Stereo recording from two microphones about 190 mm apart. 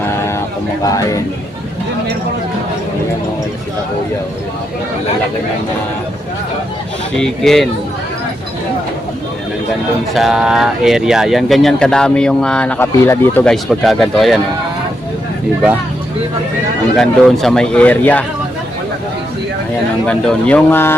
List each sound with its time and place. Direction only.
0.9 s speech: 20° left (ahead or behind)
7.2 s speech: centre (ahead or behind)
10.2 s speech: centre (ahead or behind)
17.0 s speech: centre (ahead or behind)
20.1 s speech: 5° left (ahead or behind)